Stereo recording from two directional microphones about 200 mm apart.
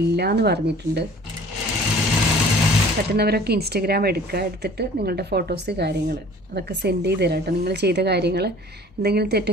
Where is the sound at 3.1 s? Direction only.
55° right (ahead or behind).